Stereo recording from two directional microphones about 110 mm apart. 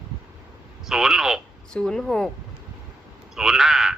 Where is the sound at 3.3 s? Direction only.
5° right (ahead or behind).